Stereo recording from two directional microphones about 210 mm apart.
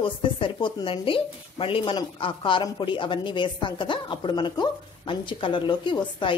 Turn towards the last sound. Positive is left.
turn(degrees=25)  # may be behind; listen again after turning